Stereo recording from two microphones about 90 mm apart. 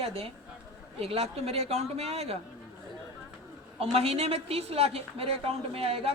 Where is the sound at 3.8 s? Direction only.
90° right.